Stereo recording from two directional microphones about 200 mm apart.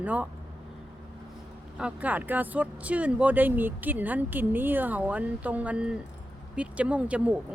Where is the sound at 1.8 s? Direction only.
5° right (ahead or behind).